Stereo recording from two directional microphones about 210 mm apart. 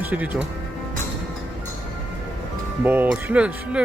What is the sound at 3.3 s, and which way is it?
Speech, 5° right (ahead or behind).